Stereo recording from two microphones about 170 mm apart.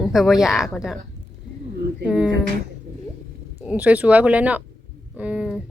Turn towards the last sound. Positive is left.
turn(degrees=-5)  # may be behind; listen again after turning